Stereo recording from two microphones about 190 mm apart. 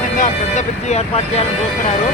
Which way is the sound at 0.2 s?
40° left (ahead or behind).